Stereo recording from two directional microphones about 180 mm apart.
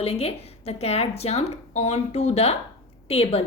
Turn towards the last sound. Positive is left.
turn(degrees=35)  # may be behind; listen again after turning